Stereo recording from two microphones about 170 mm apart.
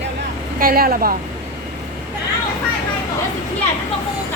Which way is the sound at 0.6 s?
60° right (ahead or behind).